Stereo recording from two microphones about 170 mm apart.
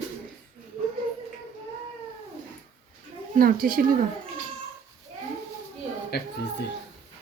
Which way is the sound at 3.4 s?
55° right (ahead or behind).